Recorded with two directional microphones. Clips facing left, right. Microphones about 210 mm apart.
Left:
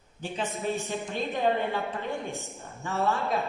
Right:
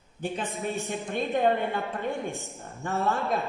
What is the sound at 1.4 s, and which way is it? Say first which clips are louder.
Speech: even; 50° right (ahead or behind).